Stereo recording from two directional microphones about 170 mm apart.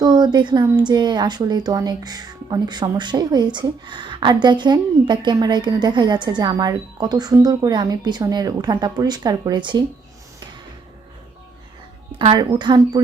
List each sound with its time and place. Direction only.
0.0 s a woman's voice: 25° right (ahead or behind)
12.2 s speech: 30° right (ahead or behind)